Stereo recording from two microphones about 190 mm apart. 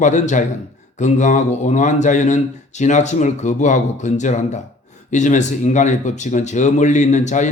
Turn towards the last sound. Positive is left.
turn(degrees=40)  # may be behind; listen again after turning